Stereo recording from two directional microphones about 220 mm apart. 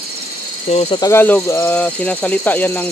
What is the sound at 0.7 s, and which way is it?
Speech, 30° left (ahead or behind).